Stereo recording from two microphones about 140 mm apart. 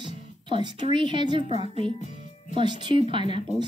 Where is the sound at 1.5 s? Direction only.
50° left (ahead or behind).